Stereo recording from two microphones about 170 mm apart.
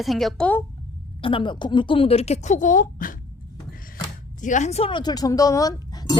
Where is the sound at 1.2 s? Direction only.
30° left (ahead or behind); by 3.2 s 55° left (ahead or behind).